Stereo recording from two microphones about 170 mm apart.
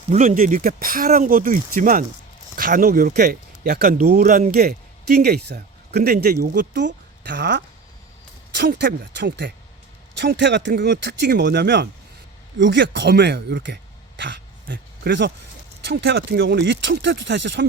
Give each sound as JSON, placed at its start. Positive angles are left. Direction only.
{"t": 0.1, "sound": "speech", "side_deg": -50}
{"t": 14.2, "sound": "dog", "side_deg": -90}
{"t": 15.9, "sound": "speech", "side_deg": -70}